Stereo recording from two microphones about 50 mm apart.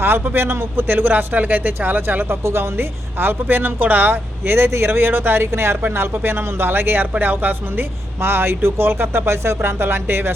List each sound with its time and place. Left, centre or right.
0.0 s speech: right
9.6 s speech: right